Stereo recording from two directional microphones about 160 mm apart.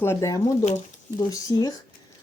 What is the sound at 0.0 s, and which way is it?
Speech, 20° left (ahead or behind).